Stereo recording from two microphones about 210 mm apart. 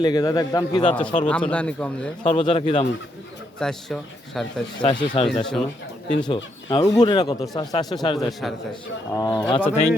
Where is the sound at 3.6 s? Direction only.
Centre (ahead or behind).